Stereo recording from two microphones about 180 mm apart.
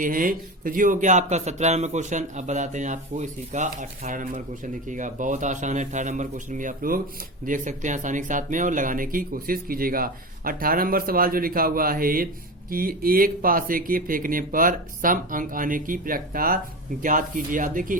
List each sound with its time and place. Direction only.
0.0 s speech: 50° right (ahead or behind)